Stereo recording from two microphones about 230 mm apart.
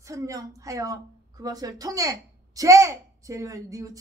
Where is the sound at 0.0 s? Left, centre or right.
Centre.